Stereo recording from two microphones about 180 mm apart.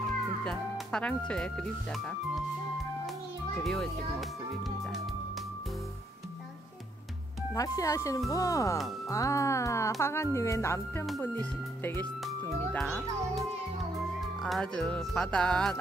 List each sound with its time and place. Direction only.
0.5 s speech: 5° left (ahead or behind)
3.5 s speech: centre (ahead or behind)
7.5 s a child's voice: 20° left (ahead or behind); by 13.4 s 5° left (ahead or behind)
14.4 s speech: centre (ahead or behind)